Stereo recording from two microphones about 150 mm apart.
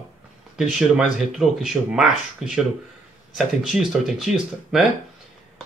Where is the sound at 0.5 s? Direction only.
5° right (ahead or behind).